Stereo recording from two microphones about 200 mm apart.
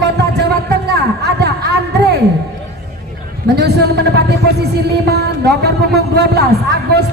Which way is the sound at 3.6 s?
55° right (ahead or behind).